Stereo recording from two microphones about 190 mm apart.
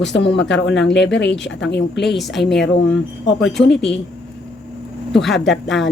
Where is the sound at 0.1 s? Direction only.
70° left (ahead or behind).